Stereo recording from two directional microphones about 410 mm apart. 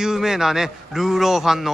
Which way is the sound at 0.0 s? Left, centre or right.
Centre.